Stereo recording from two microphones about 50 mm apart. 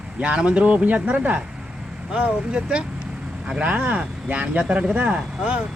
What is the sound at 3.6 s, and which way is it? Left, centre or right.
Speech, right.